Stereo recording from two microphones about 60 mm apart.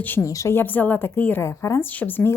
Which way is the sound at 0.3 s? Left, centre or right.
Left.